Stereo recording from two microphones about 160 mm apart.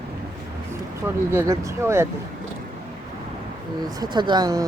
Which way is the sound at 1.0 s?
15° right (ahead or behind).